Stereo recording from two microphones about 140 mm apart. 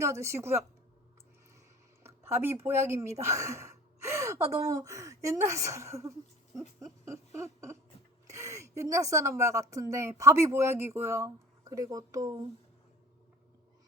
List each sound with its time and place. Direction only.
0.0 s a woman's voice: 20° right (ahead or behind)
2.0 s speech: 15° right (ahead or behind)
6.7 s a sound: 20° right (ahead or behind)
8.3 s a woman's voice: 20° right (ahead or behind)